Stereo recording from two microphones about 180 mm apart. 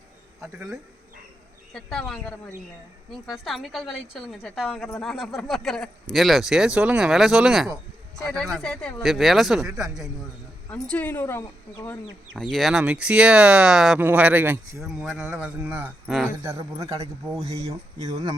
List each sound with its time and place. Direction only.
1.7 s speech: 5° left (ahead or behind)
10.7 s speech: 10° left (ahead or behind)
12.4 s speech: centre (ahead or behind); by 16.8 s 15° right (ahead or behind)
16.8 s speech: 35° right (ahead or behind)